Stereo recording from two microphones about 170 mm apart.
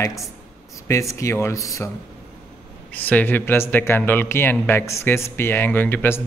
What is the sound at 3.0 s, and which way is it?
Speech, 10° left (ahead or behind).